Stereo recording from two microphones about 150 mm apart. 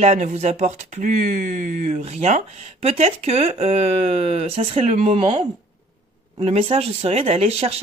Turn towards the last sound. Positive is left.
turn(degrees=-40)  # may be behind; listen again after turning